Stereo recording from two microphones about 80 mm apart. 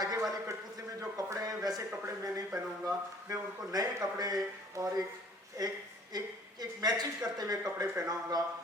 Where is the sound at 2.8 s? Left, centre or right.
Right.